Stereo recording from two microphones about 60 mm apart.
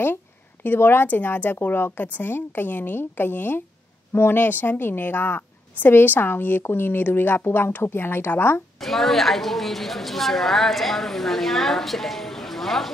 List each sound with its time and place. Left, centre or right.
0.7 s a woman's voice: left
8.7 s a woman's voice: centre